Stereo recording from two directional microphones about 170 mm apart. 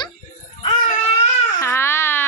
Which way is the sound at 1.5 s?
15° left (ahead or behind).